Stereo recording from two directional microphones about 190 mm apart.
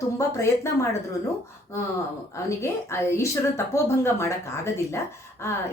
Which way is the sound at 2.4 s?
15° left (ahead or behind).